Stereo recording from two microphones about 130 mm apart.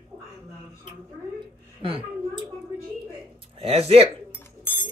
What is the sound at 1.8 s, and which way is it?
Speech, 40° right (ahead or behind).